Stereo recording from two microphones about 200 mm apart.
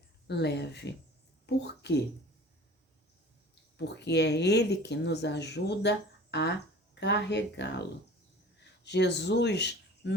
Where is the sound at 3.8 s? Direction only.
60° left (ahead or behind).